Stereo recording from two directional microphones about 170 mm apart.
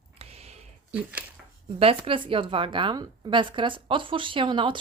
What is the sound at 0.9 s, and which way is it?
Speech, 10° right (ahead or behind).